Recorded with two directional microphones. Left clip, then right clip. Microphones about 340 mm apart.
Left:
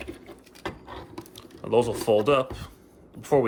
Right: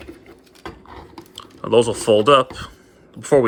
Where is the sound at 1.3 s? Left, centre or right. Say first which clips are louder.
Right 7 dB; centre.